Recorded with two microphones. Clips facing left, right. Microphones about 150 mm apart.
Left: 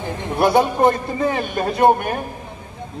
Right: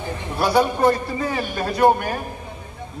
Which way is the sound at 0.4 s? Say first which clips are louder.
Left 3 dB; 20° left (ahead or behind).